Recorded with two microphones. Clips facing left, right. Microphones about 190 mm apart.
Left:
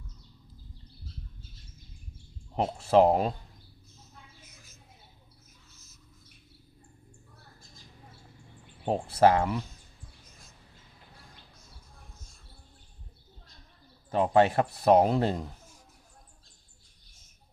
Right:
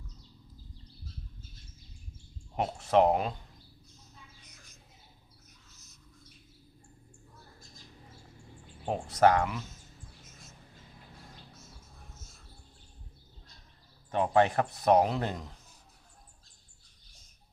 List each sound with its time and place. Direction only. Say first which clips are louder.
2.6 s speech: left 3 dB; 30° left (ahead or behind)
4.4 s mouse: left 1 dB; centre (ahead or behind)
5.7 s a sound: left 1 dB; centre (ahead or behind)
8.9 s speech: left 2 dB; 30° left (ahead or behind)
12.1 s music: right 1 dB; 5° right (ahead or behind)
14.1 s speech: left 3 dB; 30° left (ahead or behind)